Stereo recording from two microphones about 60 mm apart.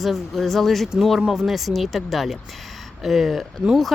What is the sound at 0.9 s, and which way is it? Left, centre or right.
Speech, centre.